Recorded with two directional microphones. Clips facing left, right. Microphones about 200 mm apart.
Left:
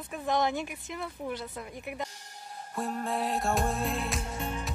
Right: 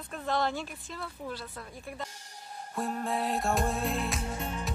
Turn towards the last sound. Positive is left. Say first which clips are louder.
# even
turn(degrees=0)  # may be behind; listen again after turning